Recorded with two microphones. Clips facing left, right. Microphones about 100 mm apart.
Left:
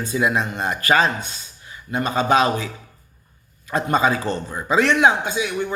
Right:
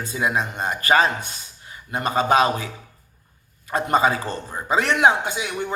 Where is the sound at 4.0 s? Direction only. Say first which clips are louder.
Even; 35° right (ahead or behind).